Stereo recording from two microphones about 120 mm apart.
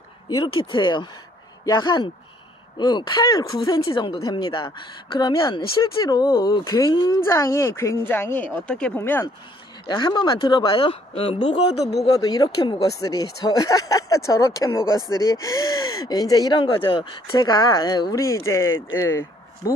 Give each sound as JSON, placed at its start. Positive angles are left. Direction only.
{"t": 0.4, "sound": "speech", "side_deg": 45}
{"t": 7.2, "sound": "speech", "side_deg": 25}
{"t": 9.8, "sound": "speech", "side_deg": 40}
{"t": 12.1, "sound": "speech", "side_deg": 30}
{"t": 17.3, "sound": "speech", "side_deg": 30}